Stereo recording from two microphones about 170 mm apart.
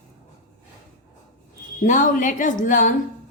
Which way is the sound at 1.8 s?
50° left (ahead or behind).